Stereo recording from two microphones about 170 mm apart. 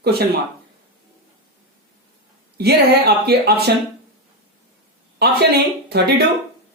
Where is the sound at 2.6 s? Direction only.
70° right (ahead or behind).